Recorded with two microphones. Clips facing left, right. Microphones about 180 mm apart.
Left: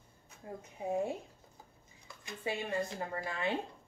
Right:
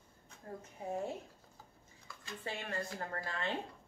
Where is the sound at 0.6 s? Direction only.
15° left (ahead or behind).